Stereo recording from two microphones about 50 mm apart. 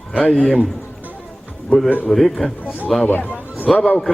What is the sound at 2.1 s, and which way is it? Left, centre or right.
Speech, centre.